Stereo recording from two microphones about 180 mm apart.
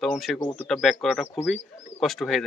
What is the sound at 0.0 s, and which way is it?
A man's voice, centre (ahead or behind).